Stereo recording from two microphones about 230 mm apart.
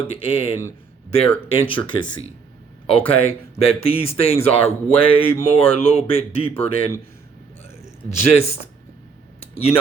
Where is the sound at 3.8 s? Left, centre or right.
Left.